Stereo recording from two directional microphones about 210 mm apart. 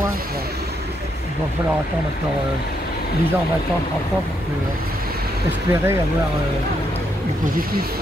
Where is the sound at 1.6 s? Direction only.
15° right (ahead or behind).